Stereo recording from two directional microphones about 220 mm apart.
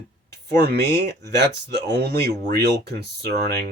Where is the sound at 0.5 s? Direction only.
45° right (ahead or behind).